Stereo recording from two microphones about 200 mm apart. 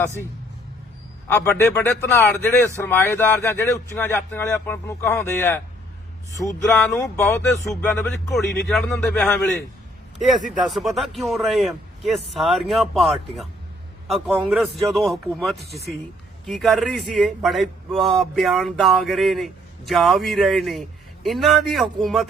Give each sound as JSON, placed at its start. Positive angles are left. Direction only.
{"t": 1.3, "sound": "speech", "side_deg": 10}
{"t": 6.9, "sound": "speech", "side_deg": 15}
{"t": 7.7, "sound": "speech", "side_deg": 5}